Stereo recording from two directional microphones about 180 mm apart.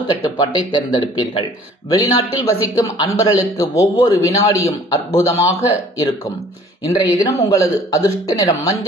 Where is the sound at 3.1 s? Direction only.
20° left (ahead or behind).